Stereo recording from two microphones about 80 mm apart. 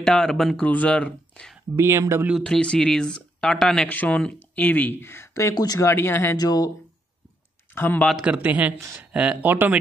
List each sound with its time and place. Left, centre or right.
0.0 s speech: centre
0.7 s speech: centre
1.8 s speech: right
2.4 s speech: centre
3.9 s speech: centre
5.1 s speech: left
5.8 s speech: left
6.3 s speech: left
7.7 s speech: left
8.2 s speech: centre